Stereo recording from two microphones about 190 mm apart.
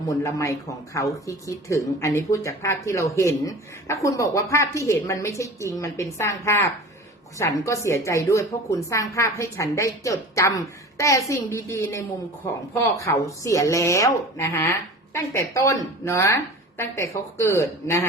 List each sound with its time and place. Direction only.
0.1 s speech: 15° left (ahead or behind)
1.6 s speech: 15° left (ahead or behind)